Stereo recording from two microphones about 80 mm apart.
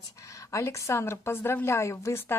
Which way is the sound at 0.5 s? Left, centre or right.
Left.